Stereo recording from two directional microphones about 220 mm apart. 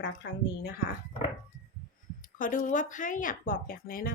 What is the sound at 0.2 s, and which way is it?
Speech, 50° left (ahead or behind).